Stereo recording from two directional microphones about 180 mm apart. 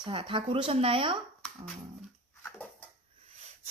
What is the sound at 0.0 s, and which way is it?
Speech, 30° right (ahead or behind).